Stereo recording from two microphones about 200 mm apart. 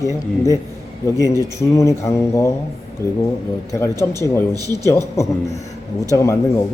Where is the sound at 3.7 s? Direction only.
15° left (ahead or behind).